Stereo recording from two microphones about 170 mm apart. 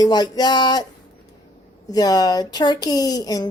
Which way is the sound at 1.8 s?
20° left (ahead or behind).